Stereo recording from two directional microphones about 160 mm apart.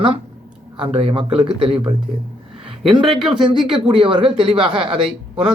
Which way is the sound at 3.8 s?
30° right (ahead or behind).